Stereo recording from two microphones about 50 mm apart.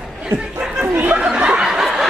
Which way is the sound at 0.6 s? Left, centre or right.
Centre.